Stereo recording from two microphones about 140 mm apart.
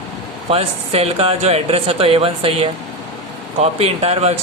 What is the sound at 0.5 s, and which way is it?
Speech, 45° right (ahead or behind).